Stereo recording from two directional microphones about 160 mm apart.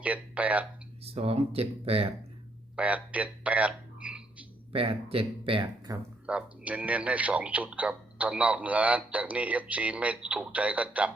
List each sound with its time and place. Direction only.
0.0 s a man's voice: 10° right (ahead or behind)
1.0 s speech: 40° right (ahead or behind)
2.7 s a sound: 10° right (ahead or behind)
4.7 s speech: 35° right (ahead or behind)
6.2 s a man's voice: 10° right (ahead or behind)